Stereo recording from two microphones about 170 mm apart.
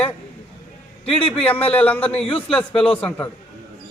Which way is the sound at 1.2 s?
30° left (ahead or behind).